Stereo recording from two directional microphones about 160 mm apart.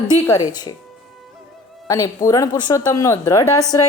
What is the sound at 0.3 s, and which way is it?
Speech, 25° left (ahead or behind).